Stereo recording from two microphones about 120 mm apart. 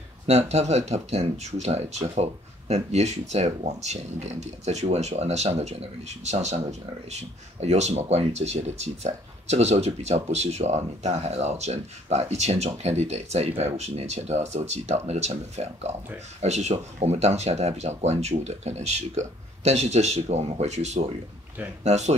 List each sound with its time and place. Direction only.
0.3 s speech: 65° right (ahead or behind)